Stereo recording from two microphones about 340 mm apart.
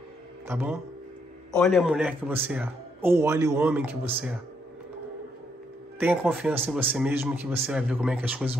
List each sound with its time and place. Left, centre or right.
0.5 s a man's voice: centre
5.9 s a man's voice: centre